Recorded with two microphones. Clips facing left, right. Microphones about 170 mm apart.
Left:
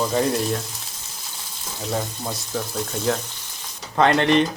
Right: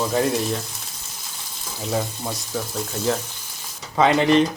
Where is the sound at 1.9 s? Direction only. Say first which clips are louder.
Right 2 dB; centre (ahead or behind).